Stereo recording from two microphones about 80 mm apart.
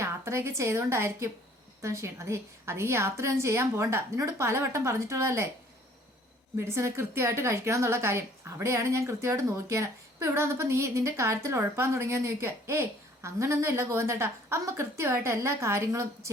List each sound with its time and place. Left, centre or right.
0.0 s a woman's voice: right
6.6 s a woman's voice: right